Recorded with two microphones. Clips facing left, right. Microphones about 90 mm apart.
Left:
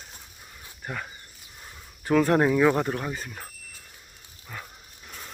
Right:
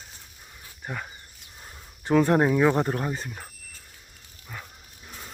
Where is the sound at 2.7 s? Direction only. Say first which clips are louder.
Right 1 dB; 25° right (ahead or behind).